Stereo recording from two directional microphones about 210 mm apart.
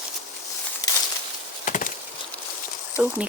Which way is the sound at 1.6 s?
40° left (ahead or behind).